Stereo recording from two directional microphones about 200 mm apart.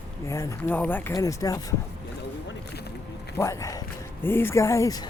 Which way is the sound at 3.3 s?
15° left (ahead or behind).